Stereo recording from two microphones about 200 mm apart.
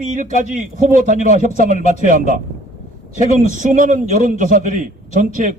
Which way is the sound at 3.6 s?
40° right (ahead or behind).